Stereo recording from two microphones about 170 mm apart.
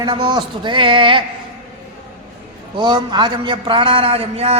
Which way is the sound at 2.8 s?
25° right (ahead or behind).